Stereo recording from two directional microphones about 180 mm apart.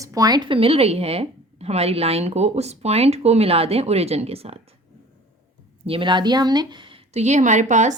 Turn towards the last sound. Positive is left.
turn(degrees=-40)  # may be behind; listen again after turning